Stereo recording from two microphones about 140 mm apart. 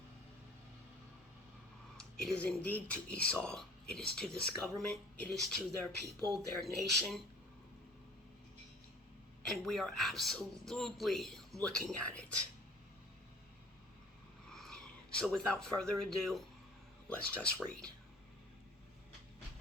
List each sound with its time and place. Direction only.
2.0 s speech: 5° left (ahead or behind)
6.1 s speech: 25° right (ahead or behind)
6.6 s speech: 5° left (ahead or behind)
9.5 s speech: 5° left (ahead or behind)
14.5 s speech: 5° left (ahead or behind)